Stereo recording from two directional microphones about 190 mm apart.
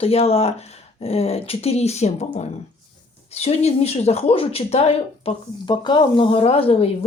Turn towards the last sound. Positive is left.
turn(degrees=30)  # may be behind; listen again after turning